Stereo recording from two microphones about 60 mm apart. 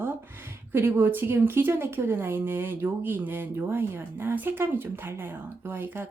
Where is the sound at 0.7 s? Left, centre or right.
Right.